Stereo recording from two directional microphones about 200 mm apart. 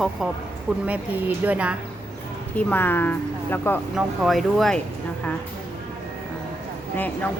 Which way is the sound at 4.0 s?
Centre (ahead or behind).